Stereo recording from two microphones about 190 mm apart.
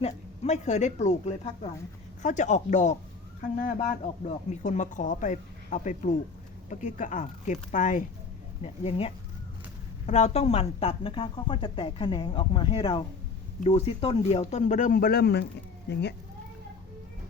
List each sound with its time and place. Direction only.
0.0 s a woman's voice: 35° left (ahead or behind); by 16.1 s 60° left (ahead or behind)